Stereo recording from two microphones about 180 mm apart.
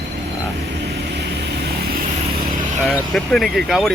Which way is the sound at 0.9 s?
70° right (ahead or behind).